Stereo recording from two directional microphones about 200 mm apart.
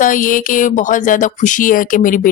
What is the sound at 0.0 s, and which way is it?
Speech, 40° left (ahead or behind).